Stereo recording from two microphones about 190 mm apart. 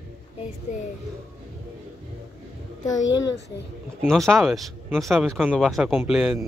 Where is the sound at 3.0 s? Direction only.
75° left (ahead or behind).